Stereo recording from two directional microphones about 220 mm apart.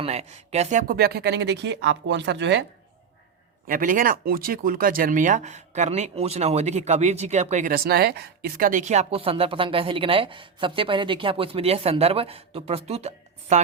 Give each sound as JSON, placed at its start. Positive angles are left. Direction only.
{"t": 0.0, "sound": "speech", "side_deg": -30}
{"t": 3.7, "sound": "speech", "side_deg": -40}